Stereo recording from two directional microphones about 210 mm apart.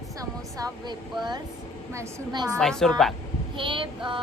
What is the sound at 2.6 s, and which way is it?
Speech, 5° left (ahead or behind).